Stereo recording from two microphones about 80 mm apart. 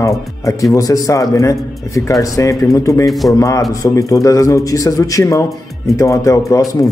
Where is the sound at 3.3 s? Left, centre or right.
Left.